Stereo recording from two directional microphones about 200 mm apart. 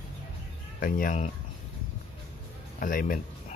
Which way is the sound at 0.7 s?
45° left (ahead or behind).